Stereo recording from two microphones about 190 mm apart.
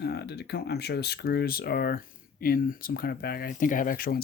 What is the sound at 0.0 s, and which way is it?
Speech, 60° left (ahead or behind).